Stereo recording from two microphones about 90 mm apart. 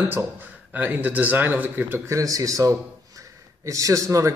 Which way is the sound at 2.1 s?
40° right (ahead or behind).